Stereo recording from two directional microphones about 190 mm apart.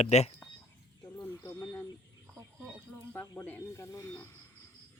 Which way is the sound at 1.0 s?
10° left (ahead or behind).